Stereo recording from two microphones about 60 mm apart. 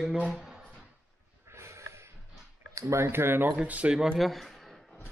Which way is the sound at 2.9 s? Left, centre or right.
Right.